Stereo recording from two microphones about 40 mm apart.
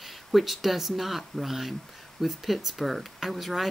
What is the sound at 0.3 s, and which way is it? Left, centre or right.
Speech, centre.